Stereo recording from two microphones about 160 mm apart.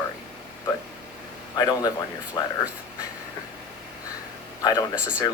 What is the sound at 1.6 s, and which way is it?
Speech, 25° left (ahead or behind).